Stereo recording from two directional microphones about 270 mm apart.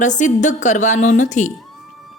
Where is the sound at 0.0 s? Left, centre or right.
Left.